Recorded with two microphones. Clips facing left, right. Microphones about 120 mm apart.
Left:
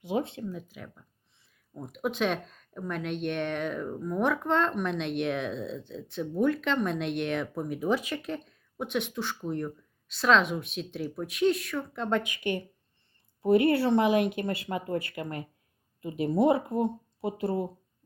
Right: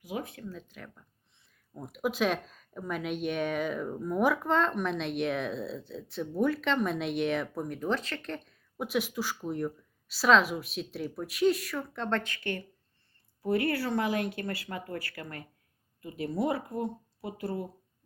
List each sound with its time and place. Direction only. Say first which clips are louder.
0.0 s speech: left 7 dB; 25° left (ahead or behind)
0.5 s speech: left 4 dB; 5° left (ahead or behind); by 17.7 s 25° left (ahead or behind)